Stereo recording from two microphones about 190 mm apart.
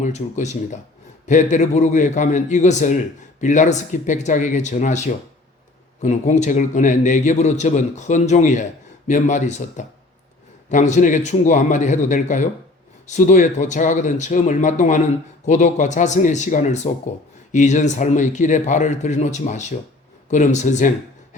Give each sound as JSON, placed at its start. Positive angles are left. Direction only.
{"t": 0.0, "sound": "a man's voice", "side_deg": 40}